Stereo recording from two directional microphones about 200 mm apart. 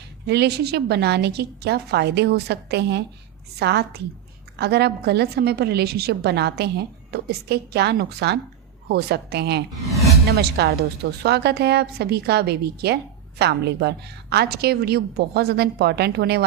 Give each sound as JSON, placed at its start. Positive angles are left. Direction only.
{"t": 0.3, "sound": "a woman's voice", "side_deg": -55}